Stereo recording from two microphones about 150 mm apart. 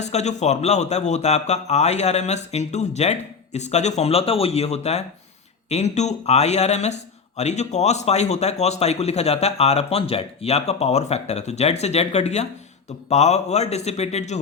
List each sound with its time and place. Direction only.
0.0 s speech: 50° left (ahead or behind)